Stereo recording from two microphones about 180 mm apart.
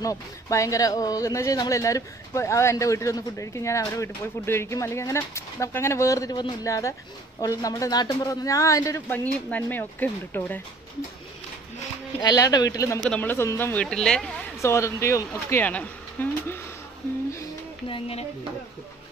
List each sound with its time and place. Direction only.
0.0 s speech: 20° left (ahead or behind)
12.2 s speech: 20° left (ahead or behind)
13.0 s speech: 5° left (ahead or behind)
14.6 s speech: 15° left (ahead or behind)
17.8 s a sound: 30° left (ahead or behind)